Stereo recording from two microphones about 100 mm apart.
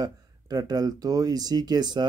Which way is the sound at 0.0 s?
40° right (ahead or behind).